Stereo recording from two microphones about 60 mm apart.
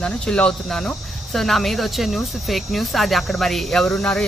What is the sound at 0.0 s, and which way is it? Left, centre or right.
Speech, centre.